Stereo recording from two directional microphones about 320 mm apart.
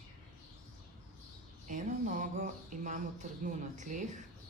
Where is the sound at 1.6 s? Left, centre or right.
Right.